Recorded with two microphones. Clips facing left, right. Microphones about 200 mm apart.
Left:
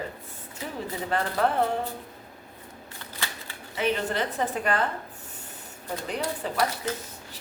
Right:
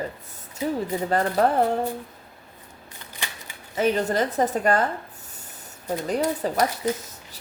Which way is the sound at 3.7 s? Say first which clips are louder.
Right 5 dB; 40° right (ahead or behind).